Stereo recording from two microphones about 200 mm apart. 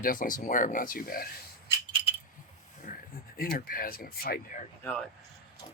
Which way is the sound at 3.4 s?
45° left (ahead or behind).